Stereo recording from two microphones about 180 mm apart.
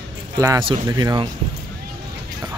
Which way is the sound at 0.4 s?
20° right (ahead or behind).